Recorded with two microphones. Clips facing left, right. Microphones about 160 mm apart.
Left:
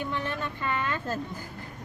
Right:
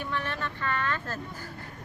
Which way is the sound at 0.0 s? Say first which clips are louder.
Left 1 dB; 15° left (ahead or behind).